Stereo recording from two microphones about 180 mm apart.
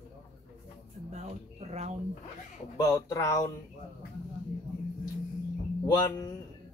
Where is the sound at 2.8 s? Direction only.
20° left (ahead or behind).